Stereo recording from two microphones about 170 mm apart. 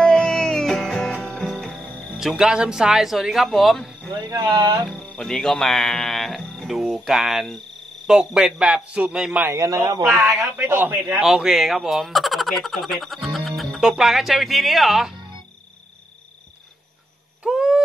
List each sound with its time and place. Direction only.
0.0 s music: 5° left (ahead or behind)
4.1 s speech: 25° right (ahead or behind)
4.8 s speech: 5° left (ahead or behind); by 10.0 s 20° right (ahead or behind)
10.0 s speech: centre (ahead or behind)
10.6 s speech: 15° right (ahead or behind)
11.2 s speech: centre (ahead or behind)
17.4 s owl: 5° right (ahead or behind)